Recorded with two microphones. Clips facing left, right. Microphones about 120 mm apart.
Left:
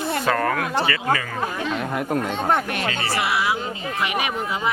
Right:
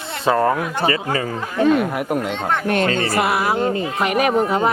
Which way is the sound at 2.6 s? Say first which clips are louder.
Right 7 dB; 55° right (ahead or behind).